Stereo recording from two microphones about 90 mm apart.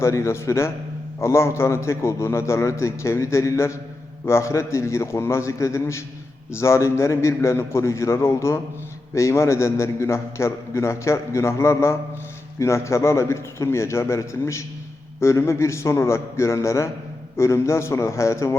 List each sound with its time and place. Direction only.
0.0 s a man's voice: 30° left (ahead or behind)